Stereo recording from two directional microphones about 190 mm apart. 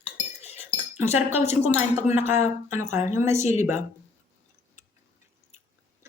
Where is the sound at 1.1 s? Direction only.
10° right (ahead or behind).